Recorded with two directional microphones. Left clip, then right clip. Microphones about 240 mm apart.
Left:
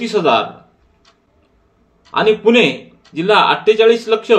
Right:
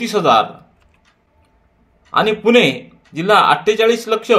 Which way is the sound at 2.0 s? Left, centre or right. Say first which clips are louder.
Left 2 dB; right.